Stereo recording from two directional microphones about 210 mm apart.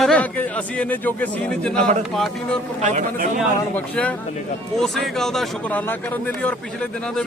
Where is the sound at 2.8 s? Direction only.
35° right (ahead or behind).